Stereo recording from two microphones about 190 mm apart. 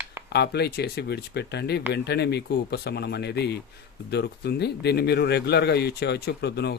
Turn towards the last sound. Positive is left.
turn(degrees=60)  # may be behind; listen again after turning